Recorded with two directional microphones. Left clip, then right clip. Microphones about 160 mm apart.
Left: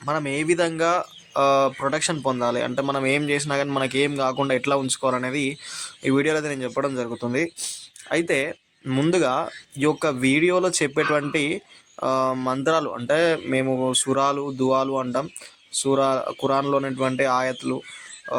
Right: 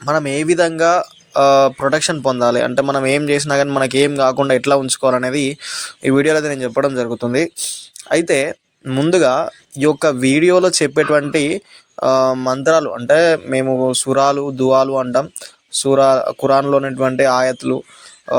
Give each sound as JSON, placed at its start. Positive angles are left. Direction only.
{"t": 0.0, "sound": "speech", "side_deg": -30}